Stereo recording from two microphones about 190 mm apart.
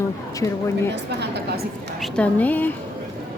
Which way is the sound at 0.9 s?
65° right (ahead or behind).